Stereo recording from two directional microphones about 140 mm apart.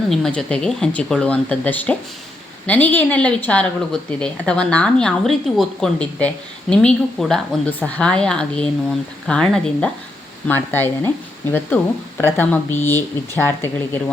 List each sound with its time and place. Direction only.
0.1 s speech: 5° left (ahead or behind)